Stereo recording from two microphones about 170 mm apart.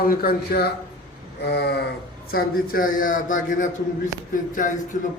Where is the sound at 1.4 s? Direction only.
75° left (ahead or behind).